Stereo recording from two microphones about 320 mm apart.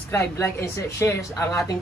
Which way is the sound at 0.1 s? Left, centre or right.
Centre.